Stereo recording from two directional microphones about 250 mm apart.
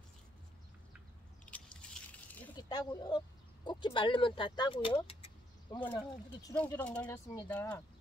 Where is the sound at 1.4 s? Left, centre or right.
Centre.